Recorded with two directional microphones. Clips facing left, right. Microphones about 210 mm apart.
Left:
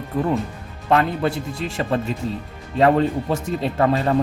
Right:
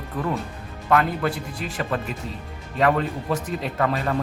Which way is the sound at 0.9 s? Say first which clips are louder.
Left 2 dB; 25° left (ahead or behind).